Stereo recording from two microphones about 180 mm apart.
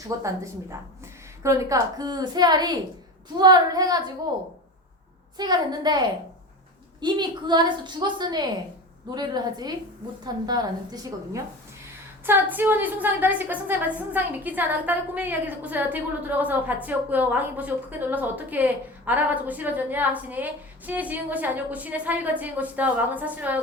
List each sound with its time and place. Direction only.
0.2 s a woman's voice: 15° right (ahead or behind)
5.4 s a woman's voice: 25° right (ahead or behind)